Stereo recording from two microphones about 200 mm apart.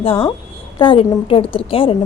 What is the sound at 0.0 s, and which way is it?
A woman's voice, 30° left (ahead or behind).